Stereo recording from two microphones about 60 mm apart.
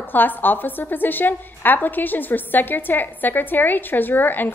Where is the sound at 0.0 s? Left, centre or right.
Left.